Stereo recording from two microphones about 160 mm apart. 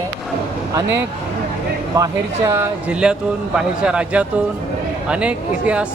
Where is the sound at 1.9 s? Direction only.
25° right (ahead or behind).